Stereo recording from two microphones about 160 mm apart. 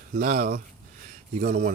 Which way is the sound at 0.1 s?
60° right (ahead or behind).